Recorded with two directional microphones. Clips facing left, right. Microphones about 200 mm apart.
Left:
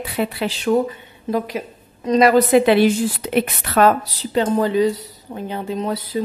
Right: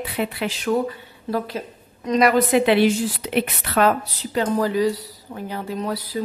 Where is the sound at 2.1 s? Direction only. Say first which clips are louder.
Left 4 dB; 30° left (ahead or behind).